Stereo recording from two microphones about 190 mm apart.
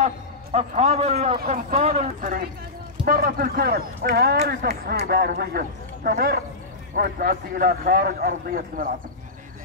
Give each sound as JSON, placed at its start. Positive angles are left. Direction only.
{"t": 0.0, "sound": "a man's voice", "side_deg": -35}
{"t": 3.1, "sound": "a man's voice", "side_deg": -50}